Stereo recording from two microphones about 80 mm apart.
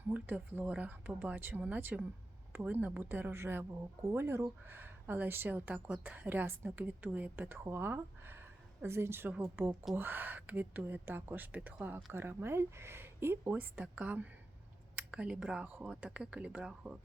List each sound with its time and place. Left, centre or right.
0.1 s a woman's voice: right
4.8 s a woman's voice: right
14.9 s a sound: centre
15.6 s a woman's voice: right
15.9 s speech: centre